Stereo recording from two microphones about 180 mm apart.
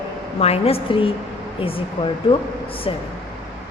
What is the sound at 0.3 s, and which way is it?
A woman's voice, 35° left (ahead or behind).